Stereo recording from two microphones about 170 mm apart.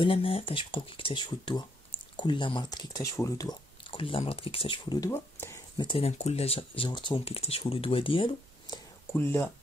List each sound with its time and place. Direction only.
0.0 s speech: 30° left (ahead or behind)
5.9 s speech: 35° left (ahead or behind)
9.1 s speech: 15° left (ahead or behind)